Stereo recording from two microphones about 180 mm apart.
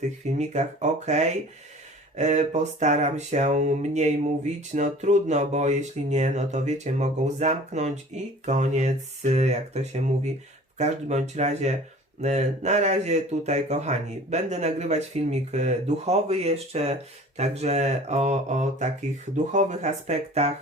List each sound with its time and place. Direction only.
0.0 s speech: 40° right (ahead or behind)